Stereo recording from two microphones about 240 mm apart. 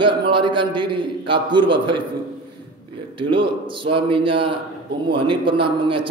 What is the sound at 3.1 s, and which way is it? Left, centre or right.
A man's voice, right.